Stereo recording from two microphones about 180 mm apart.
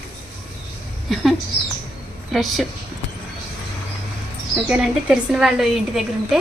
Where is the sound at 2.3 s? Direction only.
Centre (ahead or behind).